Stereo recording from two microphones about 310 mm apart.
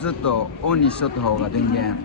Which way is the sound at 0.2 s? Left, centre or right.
Left.